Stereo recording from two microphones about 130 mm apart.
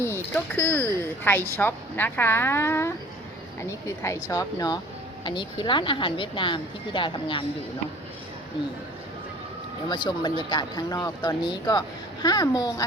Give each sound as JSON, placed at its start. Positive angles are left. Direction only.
{"t": 0.0, "sound": "speech", "side_deg": 15}
{"t": 9.9, "sound": "speech", "side_deg": 35}